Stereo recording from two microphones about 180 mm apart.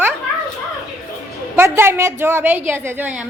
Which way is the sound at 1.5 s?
15° right (ahead or behind).